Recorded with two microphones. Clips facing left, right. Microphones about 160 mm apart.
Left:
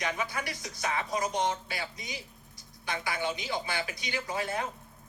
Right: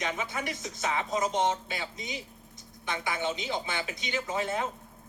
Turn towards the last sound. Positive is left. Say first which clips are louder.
# right 2 dB
turn(degrees=-20)  # may be behind; listen again after turning